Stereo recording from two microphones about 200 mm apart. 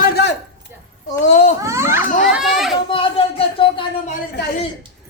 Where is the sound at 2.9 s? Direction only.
25° left (ahead or behind).